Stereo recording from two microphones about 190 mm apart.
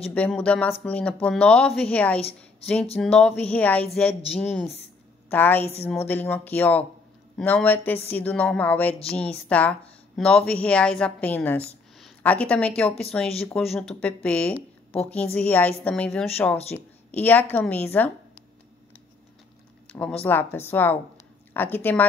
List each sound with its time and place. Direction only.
0.1 s speech: 5° left (ahead or behind)
2.1 s a woman's voice: 30° left (ahead or behind)
3.0 s a woman's voice: 5° left (ahead or behind)
19.9 s speech: 5° left (ahead or behind)